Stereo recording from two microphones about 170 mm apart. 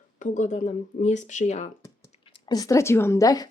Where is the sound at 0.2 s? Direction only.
45° left (ahead or behind).